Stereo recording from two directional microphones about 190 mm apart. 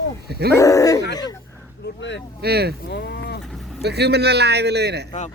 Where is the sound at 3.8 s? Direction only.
60° right (ahead or behind).